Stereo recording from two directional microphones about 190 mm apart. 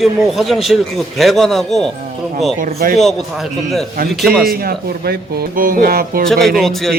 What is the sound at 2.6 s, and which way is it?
Speech, 50° right (ahead or behind).